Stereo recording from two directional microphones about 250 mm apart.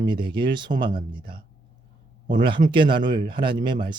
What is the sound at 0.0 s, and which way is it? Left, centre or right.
Speech, centre.